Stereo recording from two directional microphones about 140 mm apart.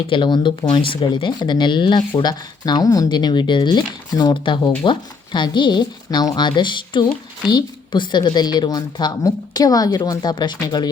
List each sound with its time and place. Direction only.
0.1 s speech: 35° left (ahead or behind)